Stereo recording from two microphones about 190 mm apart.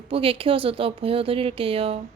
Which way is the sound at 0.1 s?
30° right (ahead or behind).